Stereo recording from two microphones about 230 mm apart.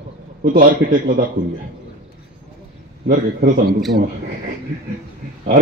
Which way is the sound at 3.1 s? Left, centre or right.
Right.